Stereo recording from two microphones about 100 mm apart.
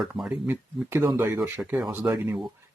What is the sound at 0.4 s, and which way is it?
Speech, 25° right (ahead or behind).